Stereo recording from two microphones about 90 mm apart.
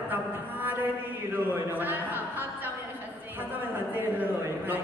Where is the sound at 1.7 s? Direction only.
20° right (ahead or behind).